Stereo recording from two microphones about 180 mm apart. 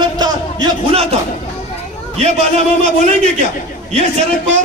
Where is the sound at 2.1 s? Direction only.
35° right (ahead or behind).